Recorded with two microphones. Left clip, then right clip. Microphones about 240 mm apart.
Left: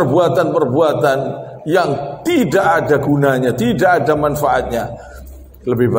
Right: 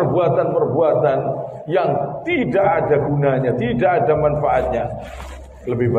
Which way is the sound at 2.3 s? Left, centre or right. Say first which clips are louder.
Left 3 dB; left.